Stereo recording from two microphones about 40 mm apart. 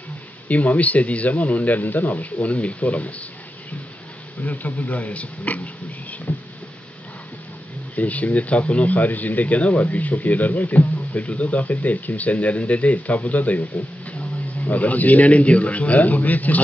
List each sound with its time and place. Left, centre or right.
0.5 s speech: left
4.4 s speech: left
6.3 s a sound: left
7.9 s speech: left